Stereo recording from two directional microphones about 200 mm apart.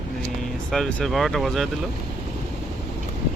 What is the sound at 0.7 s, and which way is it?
Speech, 5° left (ahead or behind).